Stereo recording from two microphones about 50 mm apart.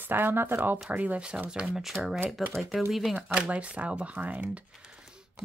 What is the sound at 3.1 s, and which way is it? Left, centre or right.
Speech, right.